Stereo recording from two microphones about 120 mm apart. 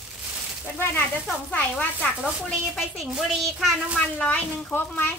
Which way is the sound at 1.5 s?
15° left (ahead or behind).